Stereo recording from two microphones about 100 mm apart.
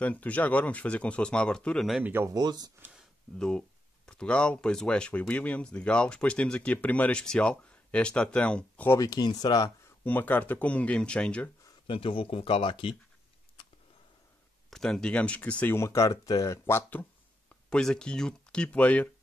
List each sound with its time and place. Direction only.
0.0 s speech: 15° left (ahead or behind)
2.0 s speech: 25° right (ahead or behind)
2.3 s speech: 40° right (ahead or behind)
3.3 s speech: 10° left (ahead or behind)
9.0 s speech: 40° left (ahead or behind)
10.0 s speech: 20° left (ahead or behind)
11.9 s speech: 65° left (ahead or behind)
14.7 s speech: 5° left (ahead or behind)
15.7 s speech: 30° left (ahead or behind)
17.6 s speech: 5° left (ahead or behind)